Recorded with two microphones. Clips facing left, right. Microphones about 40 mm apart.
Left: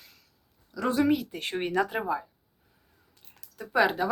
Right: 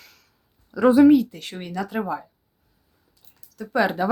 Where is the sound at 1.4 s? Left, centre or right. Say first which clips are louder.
Left 3 dB; left.